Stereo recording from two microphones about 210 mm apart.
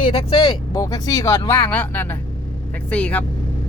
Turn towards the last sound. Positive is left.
turn(degrees=5)  # may be behind; listen again after turning